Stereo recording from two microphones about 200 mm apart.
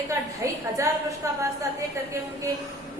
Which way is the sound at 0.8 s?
15° right (ahead or behind).